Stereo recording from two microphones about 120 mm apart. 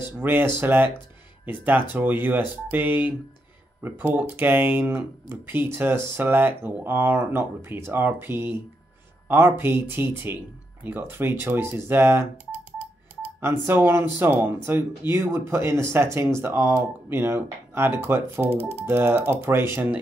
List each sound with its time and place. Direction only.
0.2 s speech: 15° right (ahead or behind)
13.4 s speech: 20° right (ahead or behind)